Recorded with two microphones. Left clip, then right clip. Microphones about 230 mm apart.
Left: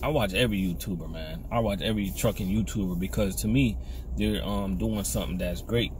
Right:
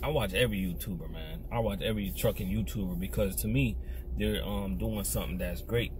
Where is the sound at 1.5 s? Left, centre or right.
Centre.